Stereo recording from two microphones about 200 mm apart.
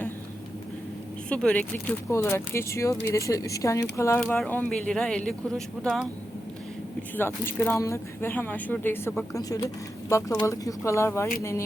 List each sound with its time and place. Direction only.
1.3 s speech: 5° left (ahead or behind)
7.2 s speech: 10° left (ahead or behind)